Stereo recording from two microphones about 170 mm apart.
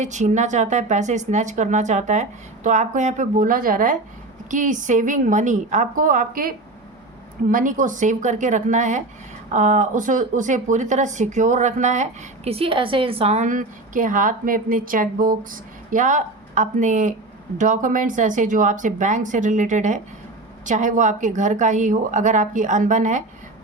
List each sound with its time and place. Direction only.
0.0 s a woman's voice: 45° right (ahead or behind)
12.5 s a woman's voice: 35° right (ahead or behind)